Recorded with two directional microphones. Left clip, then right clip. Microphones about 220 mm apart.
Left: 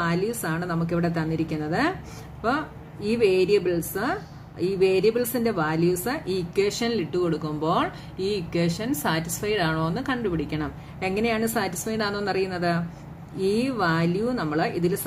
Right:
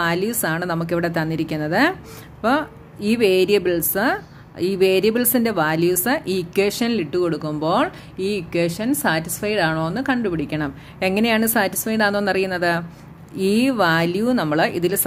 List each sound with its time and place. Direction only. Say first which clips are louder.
0.0 s a woman's voice: right 5 dB; 40° right (ahead or behind)